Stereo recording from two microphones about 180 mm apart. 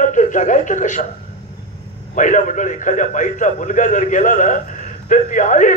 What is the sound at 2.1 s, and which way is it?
A man's voice, 45° left (ahead or behind).